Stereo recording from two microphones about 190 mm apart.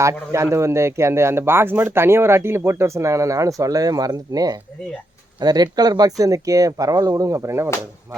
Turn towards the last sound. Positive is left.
turn(degrees=-15)  # may be behind; listen again after turning